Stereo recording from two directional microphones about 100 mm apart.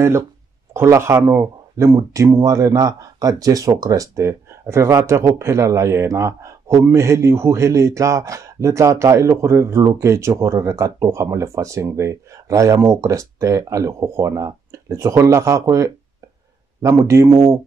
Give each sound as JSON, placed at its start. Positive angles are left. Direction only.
{"t": 0.7, "sound": "a man's voice", "side_deg": -25}